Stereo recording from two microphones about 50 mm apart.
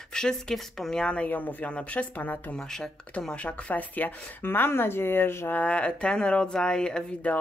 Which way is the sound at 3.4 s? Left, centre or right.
Left.